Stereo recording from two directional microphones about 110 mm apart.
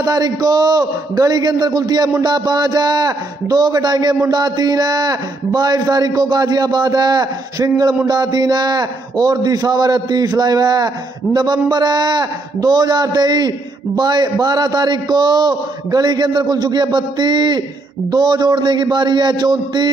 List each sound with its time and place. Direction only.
0.0 s a man's voice: 35° right (ahead or behind)